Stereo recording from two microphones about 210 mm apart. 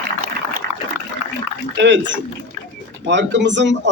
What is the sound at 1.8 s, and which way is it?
A man's voice, 60° right (ahead or behind).